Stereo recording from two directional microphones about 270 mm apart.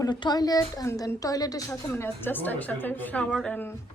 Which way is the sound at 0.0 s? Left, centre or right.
Centre.